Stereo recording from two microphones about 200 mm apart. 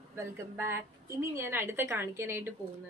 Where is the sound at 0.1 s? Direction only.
15° right (ahead or behind).